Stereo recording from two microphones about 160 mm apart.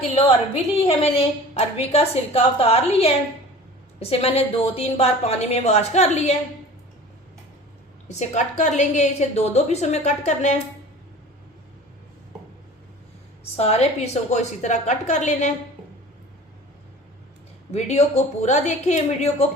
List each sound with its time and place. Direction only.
0.1 s a woman's voice: 40° left (ahead or behind)
8.0 s a woman's voice: 45° left (ahead or behind)
13.4 s a woman's voice: 40° left (ahead or behind)
17.7 s a woman's voice: 45° left (ahead or behind)